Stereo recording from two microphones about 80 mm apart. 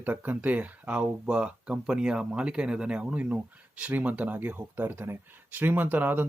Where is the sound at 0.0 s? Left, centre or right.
Right.